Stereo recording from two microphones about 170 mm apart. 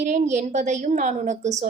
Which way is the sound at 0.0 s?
45° right (ahead or behind).